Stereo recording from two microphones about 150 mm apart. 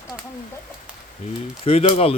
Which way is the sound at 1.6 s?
40° left (ahead or behind).